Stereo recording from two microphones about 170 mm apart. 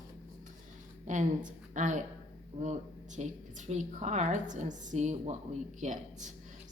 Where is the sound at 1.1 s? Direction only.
50° right (ahead or behind).